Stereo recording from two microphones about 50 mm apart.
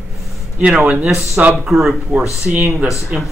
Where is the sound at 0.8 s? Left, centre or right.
Right.